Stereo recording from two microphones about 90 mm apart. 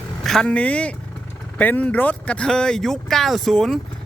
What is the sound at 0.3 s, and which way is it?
Speech, 10° left (ahead or behind).